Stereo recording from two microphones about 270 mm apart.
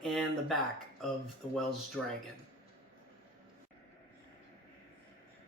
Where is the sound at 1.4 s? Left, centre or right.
Left.